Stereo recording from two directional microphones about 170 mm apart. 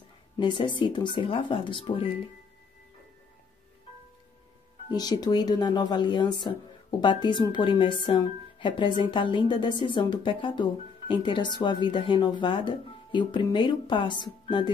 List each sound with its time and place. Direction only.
0.4 s a woman's voice: 30° left (ahead or behind)
4.9 s a woman's voice: 25° left (ahead or behind)